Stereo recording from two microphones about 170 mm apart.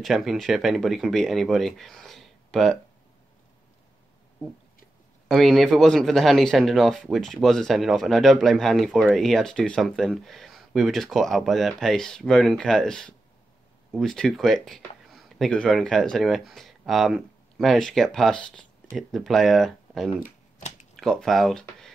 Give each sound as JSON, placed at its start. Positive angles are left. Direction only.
{"t": 0.0, "sound": "speech", "side_deg": 0}
{"t": 5.3, "sound": "speech", "side_deg": 0}
{"t": 20.2, "sound": "typewriter", "side_deg": 50}
{"t": 20.9, "sound": "speech", "side_deg": 5}